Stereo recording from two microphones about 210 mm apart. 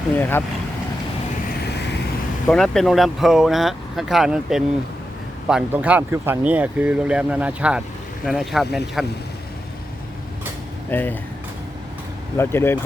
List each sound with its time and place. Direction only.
0.2 s speech: 10° left (ahead or behind)
2.5 s speech: centre (ahead or behind)
10.9 s speech: 10° left (ahead or behind)
12.4 s speech: 10° left (ahead or behind)